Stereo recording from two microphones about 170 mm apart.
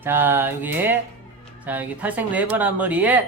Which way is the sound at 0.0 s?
10° right (ahead or behind).